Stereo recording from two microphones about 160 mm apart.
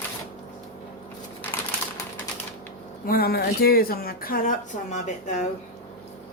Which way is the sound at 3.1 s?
70° left (ahead or behind).